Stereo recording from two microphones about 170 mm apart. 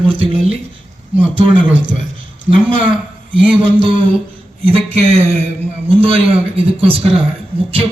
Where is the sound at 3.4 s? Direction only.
10° right (ahead or behind).